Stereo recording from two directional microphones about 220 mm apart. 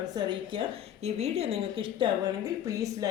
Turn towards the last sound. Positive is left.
turn(degrees=-15)  # may be behind; listen again after turning